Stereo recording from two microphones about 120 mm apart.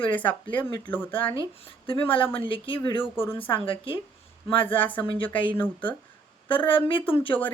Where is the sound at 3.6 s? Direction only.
45° left (ahead or behind).